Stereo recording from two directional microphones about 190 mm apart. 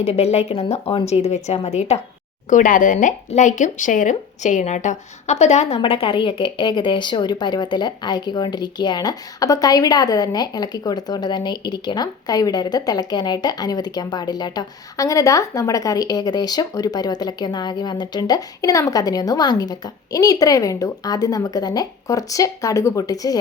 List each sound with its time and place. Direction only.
0.0 s a woman's voice: 35° left (ahead or behind)